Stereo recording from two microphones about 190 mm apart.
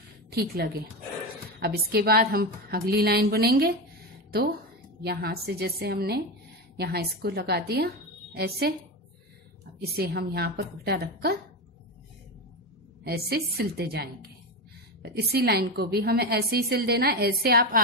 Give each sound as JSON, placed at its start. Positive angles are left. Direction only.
{"t": 0.3, "sound": "a woman's voice", "side_deg": -55}
{"t": 9.8, "sound": "a woman's voice", "side_deg": -55}
{"t": 13.0, "sound": "a woman's voice", "side_deg": -55}